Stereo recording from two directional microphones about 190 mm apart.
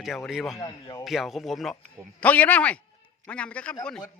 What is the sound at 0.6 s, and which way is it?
Speech, 20° left (ahead or behind).